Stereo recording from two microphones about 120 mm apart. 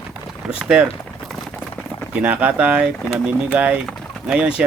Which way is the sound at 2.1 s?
10° right (ahead or behind).